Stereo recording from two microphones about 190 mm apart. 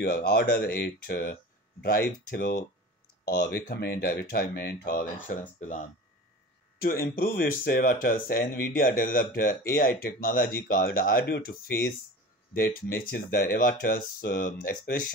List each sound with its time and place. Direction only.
0.0 s speech: 55° left (ahead or behind)